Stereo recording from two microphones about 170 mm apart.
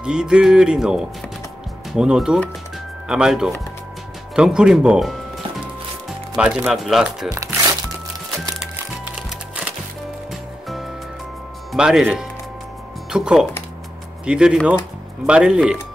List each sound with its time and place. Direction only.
0.0 s speech: 5° right (ahead or behind)
7.2 s music: 20° right (ahead or behind)
8.5 s music: 5° right (ahead or behind)
11.7 s speech: 5° right (ahead or behind)